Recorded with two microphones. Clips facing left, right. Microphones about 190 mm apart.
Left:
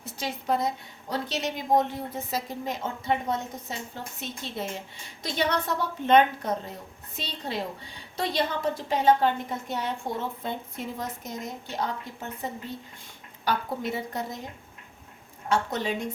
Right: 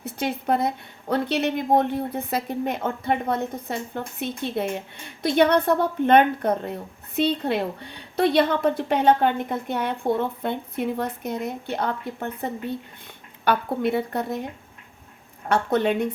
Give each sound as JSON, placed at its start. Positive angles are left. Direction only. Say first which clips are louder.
{"t": 0.0, "sound": "a woman's voice", "louder": "right 7 dB", "side_deg": -60}
{"t": 15.4, "sound": "a woman's voice", "louder": "right 6 dB", "side_deg": -60}